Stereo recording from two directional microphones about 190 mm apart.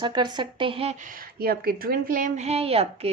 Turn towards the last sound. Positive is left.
turn(degrees=-30)  # may be behind; listen again after turning